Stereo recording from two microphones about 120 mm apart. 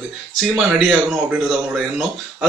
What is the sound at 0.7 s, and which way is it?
A man's voice, 10° right (ahead or behind).